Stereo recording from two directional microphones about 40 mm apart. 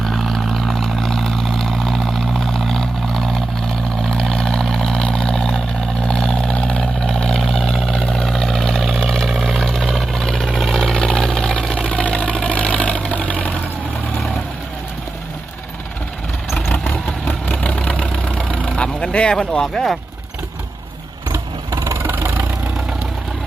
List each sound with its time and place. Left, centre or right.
0.0 s vehicle: centre; by 7.1 s left
7.1 s vehicle: centre
10.2 s vehicle: centre
10.4 s vehicle: centre; by 13.6 s left
16.7 s vehicle: left
17.9 s vehicle: left
19.0 s a sound: left
19.4 s speech: centre